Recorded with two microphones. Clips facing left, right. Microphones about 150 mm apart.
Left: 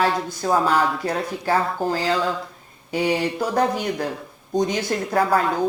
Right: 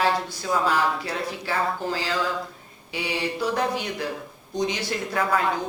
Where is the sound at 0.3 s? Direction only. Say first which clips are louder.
Left 4 dB; 45° left (ahead or behind).